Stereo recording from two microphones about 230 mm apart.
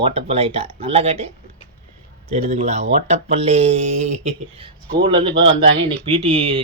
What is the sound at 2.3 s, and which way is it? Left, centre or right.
Speech, right.